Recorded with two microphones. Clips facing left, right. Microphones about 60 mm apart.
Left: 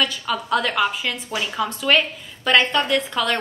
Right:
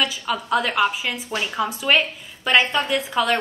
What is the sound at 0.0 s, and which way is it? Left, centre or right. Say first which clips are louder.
A woman's voice: left 1 dB; centre.